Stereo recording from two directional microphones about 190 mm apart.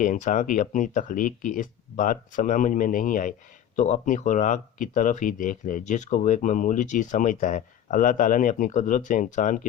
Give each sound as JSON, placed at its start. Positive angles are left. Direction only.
{"t": 0.0, "sound": "speech", "side_deg": 40}